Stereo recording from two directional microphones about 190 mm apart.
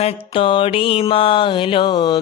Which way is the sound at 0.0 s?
30° left (ahead or behind).